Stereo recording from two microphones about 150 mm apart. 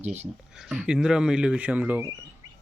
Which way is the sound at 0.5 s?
5° right (ahead or behind).